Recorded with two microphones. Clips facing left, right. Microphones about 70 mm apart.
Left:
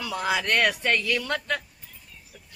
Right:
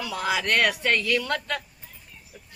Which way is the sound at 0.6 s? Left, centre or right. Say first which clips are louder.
Right 1 dB; centre.